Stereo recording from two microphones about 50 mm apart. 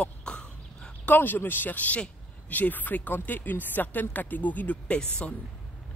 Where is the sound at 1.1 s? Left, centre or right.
Left.